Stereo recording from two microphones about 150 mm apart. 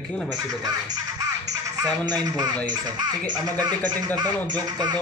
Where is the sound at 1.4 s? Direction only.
25° right (ahead or behind).